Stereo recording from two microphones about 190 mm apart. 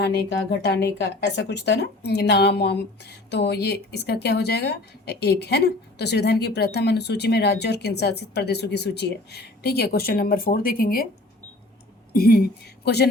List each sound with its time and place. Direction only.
0.0 s speech: 60° left (ahead or behind)
12.1 s a woman's voice: 50° left (ahead or behind)